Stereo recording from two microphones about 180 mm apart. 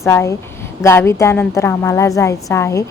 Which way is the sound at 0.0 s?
15° left (ahead or behind).